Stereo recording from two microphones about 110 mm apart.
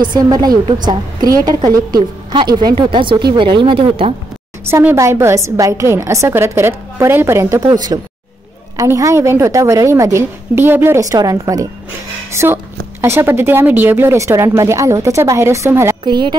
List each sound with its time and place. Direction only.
0.0 s a woman's voice: 40° right (ahead or behind); by 4.1 s 55° right (ahead or behind)
4.6 s speech: 25° right (ahead or behind)
16.0 s speech: 45° right (ahead or behind)